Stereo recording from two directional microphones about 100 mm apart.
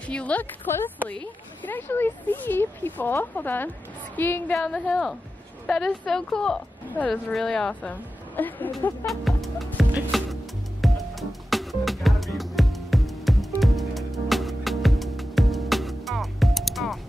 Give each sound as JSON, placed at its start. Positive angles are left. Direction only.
{"t": 0.1, "sound": "a woman's voice", "side_deg": 15}
{"t": 4.6, "sound": "a woman's voice", "side_deg": 5}
{"t": 9.0, "sound": "music", "side_deg": 0}